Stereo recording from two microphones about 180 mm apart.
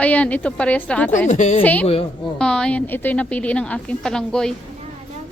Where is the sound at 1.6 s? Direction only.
10° left (ahead or behind).